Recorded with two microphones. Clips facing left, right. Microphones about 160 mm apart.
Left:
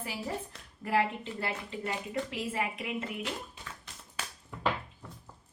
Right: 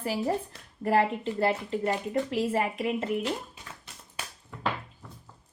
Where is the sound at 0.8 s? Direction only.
40° right (ahead or behind).